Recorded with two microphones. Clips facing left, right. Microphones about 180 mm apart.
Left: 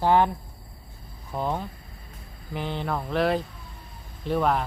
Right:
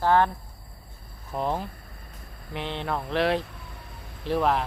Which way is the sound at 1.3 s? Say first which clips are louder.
Even; 5° right (ahead or behind).